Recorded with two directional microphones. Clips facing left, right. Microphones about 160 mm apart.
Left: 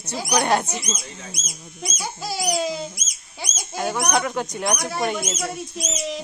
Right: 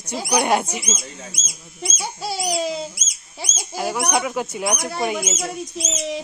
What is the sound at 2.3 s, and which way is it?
Speech, centre (ahead or behind).